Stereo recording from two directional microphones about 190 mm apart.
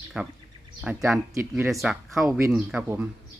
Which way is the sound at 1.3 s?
15° right (ahead or behind).